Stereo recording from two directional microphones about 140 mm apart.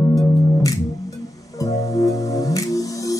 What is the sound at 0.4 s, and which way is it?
Music, 25° left (ahead or behind).